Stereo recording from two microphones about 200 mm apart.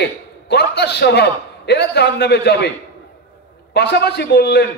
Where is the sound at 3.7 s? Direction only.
55° left (ahead or behind).